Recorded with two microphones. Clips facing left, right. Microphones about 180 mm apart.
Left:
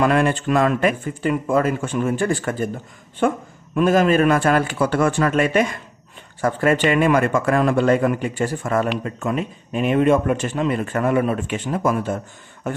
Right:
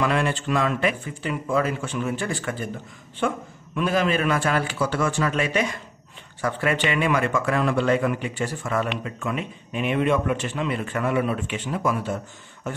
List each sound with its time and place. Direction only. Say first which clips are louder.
0.0 s speech: left 5 dB; 50° left (ahead or behind)